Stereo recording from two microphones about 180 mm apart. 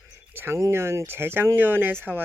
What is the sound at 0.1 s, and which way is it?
Speech, 15° right (ahead or behind).